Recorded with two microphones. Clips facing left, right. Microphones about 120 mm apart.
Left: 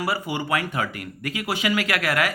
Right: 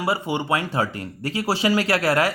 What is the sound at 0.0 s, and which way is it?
Speech, 25° right (ahead or behind).